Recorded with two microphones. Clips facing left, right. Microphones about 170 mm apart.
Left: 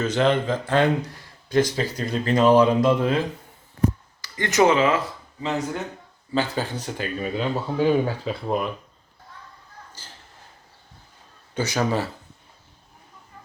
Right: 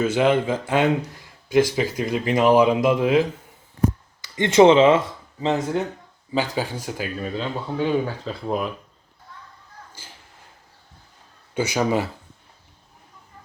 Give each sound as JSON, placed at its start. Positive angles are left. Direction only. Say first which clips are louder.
{"t": 0.0, "sound": "speech", "louder": "right 2 dB", "side_deg": -10}
{"t": 4.2, "sound": "speech", "louder": "right 5 dB", "side_deg": -25}
{"t": 6.3, "sound": "speech", "louder": "right 1 dB", "side_deg": -15}
{"t": 7.3, "sound": "speech", "louder": "left 4 dB", "side_deg": 10}
{"t": 9.9, "sound": "a sound", "louder": "even", "side_deg": -10}
{"t": 11.5, "sound": "speech", "louder": "right 2 dB", "side_deg": -10}